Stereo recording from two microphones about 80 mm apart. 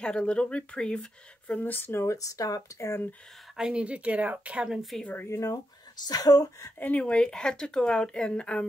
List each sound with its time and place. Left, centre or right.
0.0 s speech: centre
1.5 s speech: left
3.5 s speech: centre
5.0 s speech: left
5.3 s speech: left
5.9 s speech: left
6.8 s speech: centre